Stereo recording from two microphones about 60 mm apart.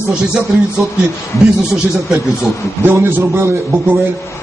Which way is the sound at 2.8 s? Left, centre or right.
Right.